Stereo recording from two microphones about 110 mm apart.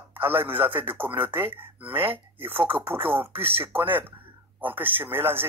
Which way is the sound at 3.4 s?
60° right (ahead or behind).